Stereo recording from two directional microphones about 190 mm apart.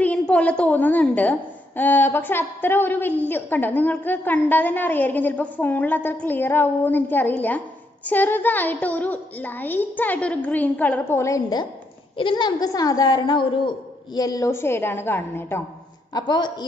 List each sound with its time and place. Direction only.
0.0 s a woman's voice: 5° left (ahead or behind)
16.1 s a woman's voice: 20° left (ahead or behind)